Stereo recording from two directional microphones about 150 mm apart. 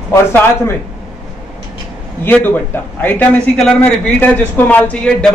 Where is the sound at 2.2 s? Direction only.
15° left (ahead or behind).